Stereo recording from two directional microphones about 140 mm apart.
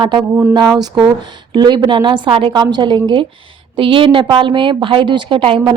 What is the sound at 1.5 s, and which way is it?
A woman's voice, 35° right (ahead or behind).